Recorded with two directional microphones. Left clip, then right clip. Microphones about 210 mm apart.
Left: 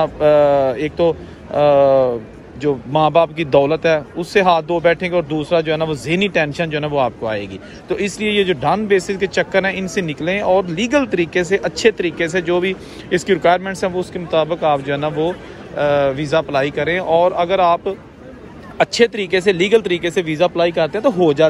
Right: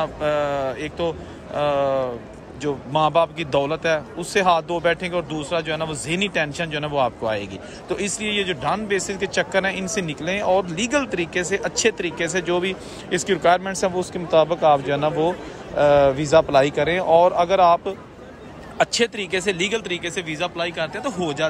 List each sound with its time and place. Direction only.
0.0 s speech: 5° right (ahead or behind)